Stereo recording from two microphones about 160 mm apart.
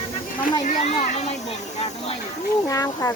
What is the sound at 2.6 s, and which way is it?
Speech, 20° left (ahead or behind).